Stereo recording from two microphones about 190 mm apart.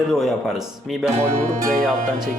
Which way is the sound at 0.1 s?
Centre (ahead or behind).